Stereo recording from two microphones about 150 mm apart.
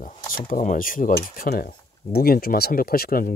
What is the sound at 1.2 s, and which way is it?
Speech, 85° left.